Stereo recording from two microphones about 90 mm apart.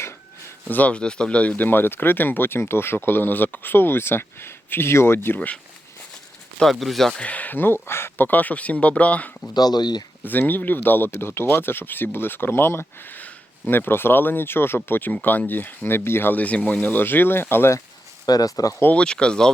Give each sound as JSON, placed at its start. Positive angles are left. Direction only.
{"t": 0.0, "sound": "a sound", "side_deg": 30}
{"t": 0.8, "sound": "speech", "side_deg": 15}
{"t": 6.6, "sound": "speech", "side_deg": 0}
{"t": 7.2, "sound": "speech", "side_deg": 15}
{"t": 9.6, "sound": "speech", "side_deg": 50}
{"t": 10.2, "sound": "speech", "side_deg": 20}
{"t": 18.3, "sound": "speech", "side_deg": 45}
{"t": 18.8, "sound": "speech", "side_deg": 20}